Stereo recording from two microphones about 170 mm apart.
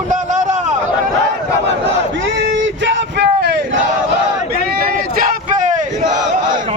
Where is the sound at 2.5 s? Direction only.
90° right.